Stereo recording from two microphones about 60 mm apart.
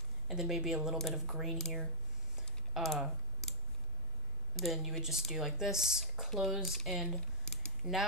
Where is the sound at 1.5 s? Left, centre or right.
Centre.